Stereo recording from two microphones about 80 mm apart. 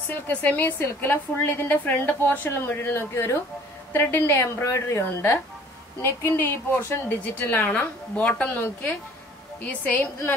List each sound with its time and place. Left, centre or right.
0.3 s a woman's voice: left
7.3 s a woman's voice: left